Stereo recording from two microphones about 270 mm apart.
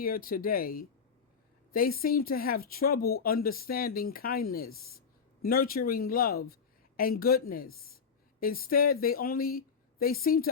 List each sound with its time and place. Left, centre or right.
0.0 s speech: left
2.0 s speech: left